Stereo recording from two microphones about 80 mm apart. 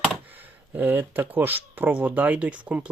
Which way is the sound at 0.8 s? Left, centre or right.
Right.